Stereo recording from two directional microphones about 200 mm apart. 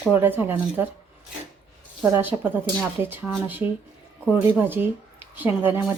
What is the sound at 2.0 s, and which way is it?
A woman's voice, 10° right (ahead or behind).